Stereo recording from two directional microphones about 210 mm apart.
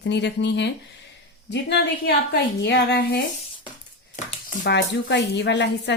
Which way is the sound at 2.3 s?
55° left (ahead or behind).